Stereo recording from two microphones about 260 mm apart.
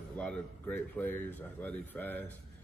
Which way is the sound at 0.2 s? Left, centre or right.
Centre.